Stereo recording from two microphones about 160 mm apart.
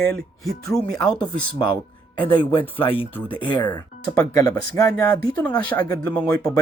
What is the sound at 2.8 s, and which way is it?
Speech, 35° left (ahead or behind).